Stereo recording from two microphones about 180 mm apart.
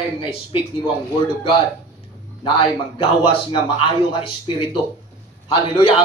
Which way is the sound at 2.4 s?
30° left (ahead or behind).